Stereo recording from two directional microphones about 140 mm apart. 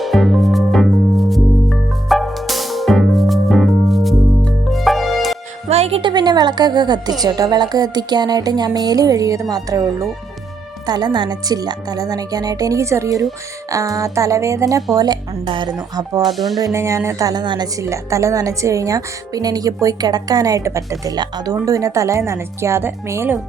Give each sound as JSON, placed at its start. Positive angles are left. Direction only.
{"t": 0.0, "sound": "music", "side_deg": 0}
{"t": 5.6, "sound": "a woman's voice", "side_deg": -50}
{"t": 16.3, "sound": "speech", "side_deg": 0}
{"t": 16.6, "sound": "a woman's voice", "side_deg": -25}
{"t": 17.8, "sound": "a woman's voice", "side_deg": -20}